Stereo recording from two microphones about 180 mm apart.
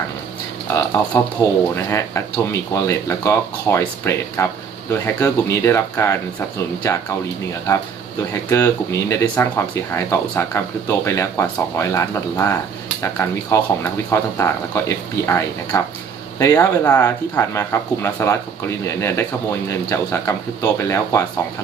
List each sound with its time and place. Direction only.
0.7 s speech: 15° left (ahead or behind)